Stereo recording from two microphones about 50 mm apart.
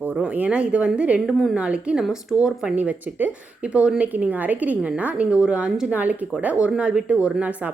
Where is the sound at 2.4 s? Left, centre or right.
Centre.